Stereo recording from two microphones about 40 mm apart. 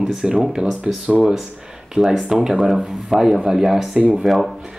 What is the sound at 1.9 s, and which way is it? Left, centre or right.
Speech, centre.